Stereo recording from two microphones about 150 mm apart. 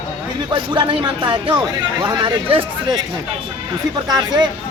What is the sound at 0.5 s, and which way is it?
Speech, 30° right (ahead or behind).